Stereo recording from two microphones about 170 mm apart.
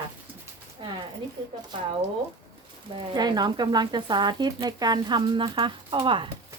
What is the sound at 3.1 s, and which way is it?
Speech, 25° right (ahead or behind).